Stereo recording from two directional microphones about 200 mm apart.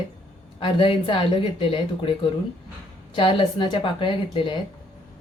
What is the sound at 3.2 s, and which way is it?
Speech, 25° left (ahead or behind).